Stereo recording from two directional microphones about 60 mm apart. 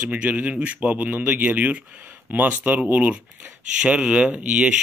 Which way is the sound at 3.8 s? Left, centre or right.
Centre.